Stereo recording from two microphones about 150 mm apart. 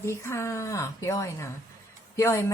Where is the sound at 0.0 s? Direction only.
20° left (ahead or behind).